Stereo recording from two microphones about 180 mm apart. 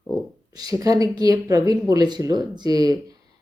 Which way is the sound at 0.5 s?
20° right (ahead or behind).